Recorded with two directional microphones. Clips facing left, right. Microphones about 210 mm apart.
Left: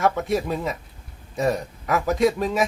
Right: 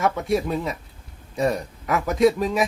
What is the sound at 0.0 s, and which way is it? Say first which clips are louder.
A man's voice: even; centre (ahead or behind).